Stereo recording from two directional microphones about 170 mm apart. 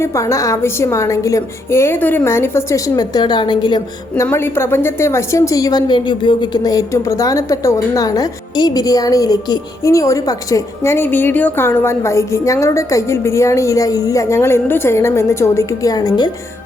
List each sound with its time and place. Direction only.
0.0 s a woman's voice: 15° left (ahead or behind)
4.1 s a woman's voice: 15° left (ahead or behind)